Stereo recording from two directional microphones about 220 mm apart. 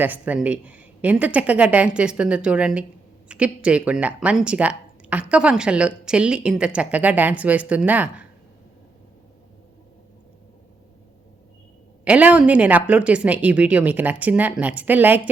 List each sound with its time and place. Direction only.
0.0 s speech: 5° right (ahead or behind)
12.0 s a woman's voice: 5° right (ahead or behind)